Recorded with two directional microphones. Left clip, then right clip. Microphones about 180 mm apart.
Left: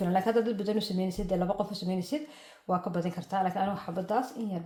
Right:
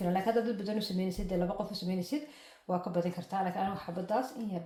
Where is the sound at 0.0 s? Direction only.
40° left (ahead or behind).